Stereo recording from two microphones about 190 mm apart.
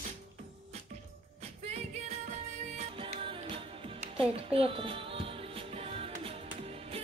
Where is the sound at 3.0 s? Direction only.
30° right (ahead or behind).